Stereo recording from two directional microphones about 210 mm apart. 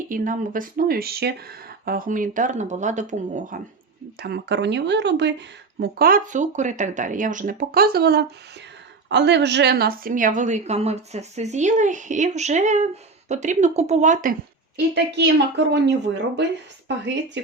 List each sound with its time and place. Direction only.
0.1 s a woman's voice: 40° right (ahead or behind)
4.2 s a woman's voice: 50° right (ahead or behind)
5.8 s a woman's voice: 45° right (ahead or behind)
14.9 s a woman's voice: 55° right (ahead or behind)